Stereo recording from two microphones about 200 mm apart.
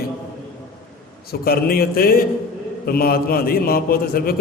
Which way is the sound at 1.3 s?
50° left (ahead or behind).